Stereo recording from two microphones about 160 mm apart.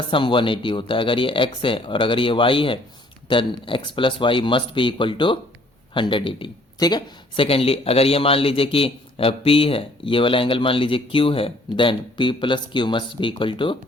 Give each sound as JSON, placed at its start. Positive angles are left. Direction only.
{"t": 0.1, "sound": "speech", "side_deg": 30}